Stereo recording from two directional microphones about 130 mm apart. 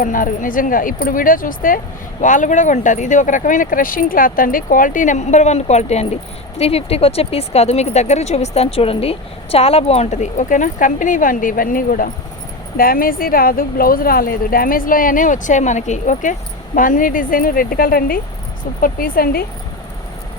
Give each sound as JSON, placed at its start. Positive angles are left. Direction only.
{"t": 0.0, "sound": "speech", "side_deg": 90}
{"t": 2.2, "sound": "speech", "side_deg": 75}
{"t": 16.7, "sound": "speech", "side_deg": 90}